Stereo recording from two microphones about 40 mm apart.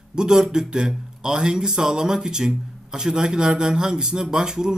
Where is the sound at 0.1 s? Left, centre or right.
Centre.